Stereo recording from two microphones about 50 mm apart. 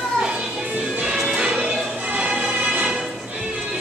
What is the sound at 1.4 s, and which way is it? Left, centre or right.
Music, centre.